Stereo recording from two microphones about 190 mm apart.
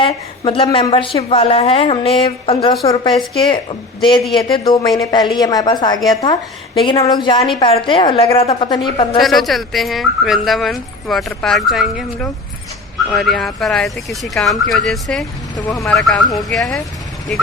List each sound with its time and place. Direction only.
0.0 s a woman's voice: 30° left (ahead or behind)
9.2 s speech: centre (ahead or behind)